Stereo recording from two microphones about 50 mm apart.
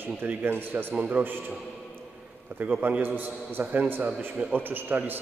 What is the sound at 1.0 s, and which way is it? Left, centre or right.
Speech, right.